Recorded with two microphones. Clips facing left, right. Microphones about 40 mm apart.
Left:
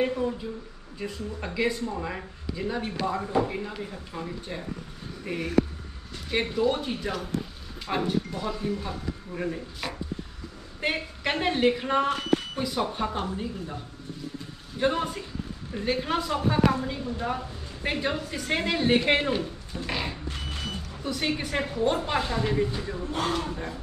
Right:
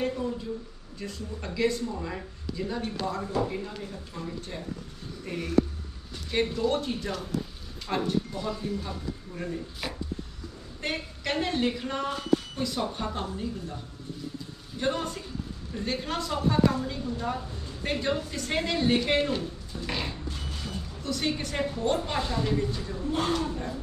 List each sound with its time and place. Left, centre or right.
0.0 s a woman's voice: left
9.8 s chopping: centre
10.8 s a woman's voice: left
14.8 s a woman's voice: centre
19.9 s a woman's voice: centre
20.3 s vehicle: left
21.0 s speech: centre
23.1 s a woman's voice: centre
23.5 s speech: left